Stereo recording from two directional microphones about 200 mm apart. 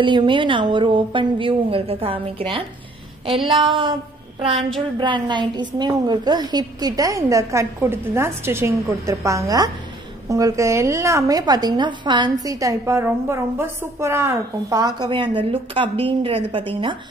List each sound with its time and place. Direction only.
0.0 s a woman's voice: 25° right (ahead or behind)
4.9 s a woman's voice: 25° right (ahead or behind)